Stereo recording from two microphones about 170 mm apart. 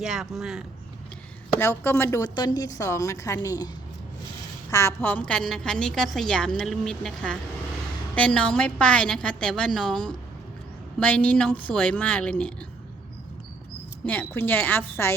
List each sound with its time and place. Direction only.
0.0 s a woman's voice: 5° right (ahead or behind)
1.5 s a woman's voice: 15° left (ahead or behind)
2.2 s a woman's voice: 25° left (ahead or behind)
4.7 s a woman's voice: 15° left (ahead or behind)
14.0 s a woman's voice: 10° left (ahead or behind)